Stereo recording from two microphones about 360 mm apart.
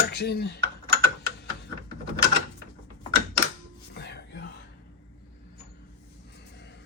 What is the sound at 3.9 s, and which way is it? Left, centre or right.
Music, left.